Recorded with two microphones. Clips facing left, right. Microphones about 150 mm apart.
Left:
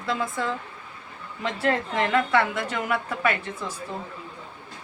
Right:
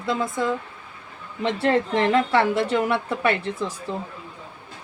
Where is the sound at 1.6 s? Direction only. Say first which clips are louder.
Right 4 dB; 25° right (ahead or behind).